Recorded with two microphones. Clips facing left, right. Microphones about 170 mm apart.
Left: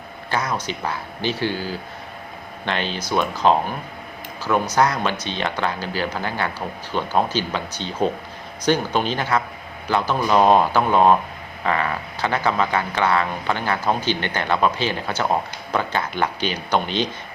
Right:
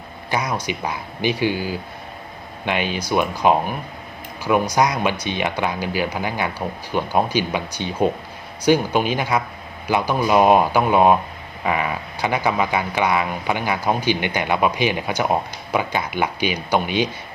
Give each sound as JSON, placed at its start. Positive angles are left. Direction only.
{"t": 0.3, "sound": "speech", "side_deg": -10}